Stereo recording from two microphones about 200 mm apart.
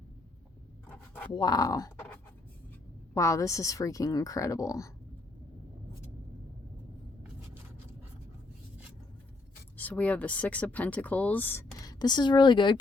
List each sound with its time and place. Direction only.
0.9 s writing: 10° left (ahead or behind)
1.3 s speech: 20° left (ahead or behind)
3.2 s speech: 15° left (ahead or behind)
9.7 s speech: 5° left (ahead or behind); by 12.8 s 25° left (ahead or behind)